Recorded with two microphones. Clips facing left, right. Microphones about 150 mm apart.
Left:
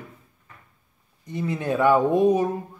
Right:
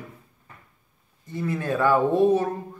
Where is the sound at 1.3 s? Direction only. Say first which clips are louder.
Left 1 dB; 20° left (ahead or behind).